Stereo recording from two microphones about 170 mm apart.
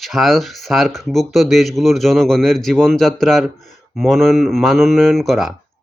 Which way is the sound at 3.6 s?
45° left (ahead or behind).